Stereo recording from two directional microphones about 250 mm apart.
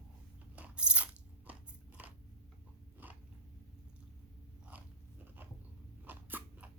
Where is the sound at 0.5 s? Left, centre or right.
Centre.